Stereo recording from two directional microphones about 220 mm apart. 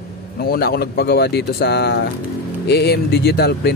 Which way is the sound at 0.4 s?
45° left (ahead or behind).